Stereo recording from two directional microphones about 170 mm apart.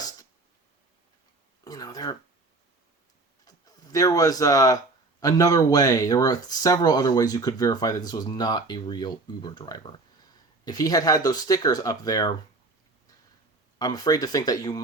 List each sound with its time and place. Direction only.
1.6 s speech: 20° left (ahead or behind)
3.4 s speech: 20° left (ahead or behind)
13.7 s speech: 20° left (ahead or behind)